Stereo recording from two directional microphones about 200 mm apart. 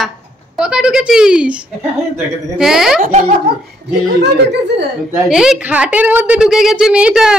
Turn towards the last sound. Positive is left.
turn(degrees=-5)  # may be behind; listen again after turning